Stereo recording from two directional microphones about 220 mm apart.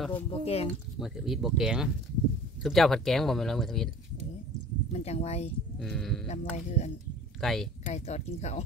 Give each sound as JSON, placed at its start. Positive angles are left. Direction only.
{"t": 0.3, "sound": "speech", "side_deg": 25}
{"t": 0.9, "sound": "speech", "side_deg": 0}
{"t": 4.9, "sound": "speech", "side_deg": 30}
{"t": 5.8, "sound": "speech", "side_deg": 0}
{"t": 6.2, "sound": "speech", "side_deg": 30}
{"t": 7.3, "sound": "speech", "side_deg": 0}
{"t": 7.8, "sound": "speech", "side_deg": 30}